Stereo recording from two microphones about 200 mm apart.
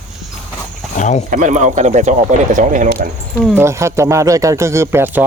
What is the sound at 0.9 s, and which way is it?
Speech, 35° left (ahead or behind).